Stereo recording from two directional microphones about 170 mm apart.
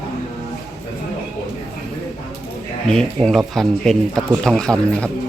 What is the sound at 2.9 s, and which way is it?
Speech, 5° left (ahead or behind).